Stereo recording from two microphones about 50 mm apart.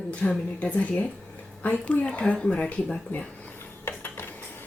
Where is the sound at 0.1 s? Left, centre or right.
Left.